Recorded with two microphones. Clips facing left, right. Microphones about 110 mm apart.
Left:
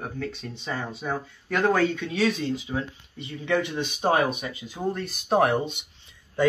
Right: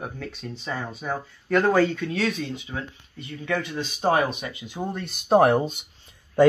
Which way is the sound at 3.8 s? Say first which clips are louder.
Right 4 dB; centre (ahead or behind).